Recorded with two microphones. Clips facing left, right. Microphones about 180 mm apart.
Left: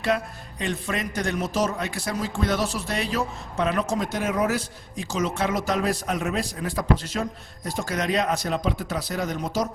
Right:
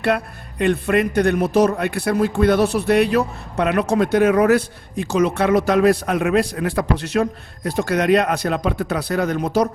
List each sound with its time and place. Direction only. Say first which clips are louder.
0.6 s a man's voice: right 11 dB; 60° right (ahead or behind)